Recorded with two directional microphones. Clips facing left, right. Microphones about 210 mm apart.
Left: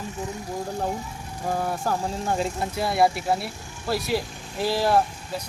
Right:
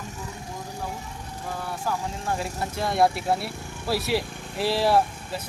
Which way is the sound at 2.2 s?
25° left (ahead or behind).